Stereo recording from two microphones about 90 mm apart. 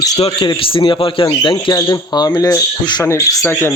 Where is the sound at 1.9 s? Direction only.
50° left (ahead or behind).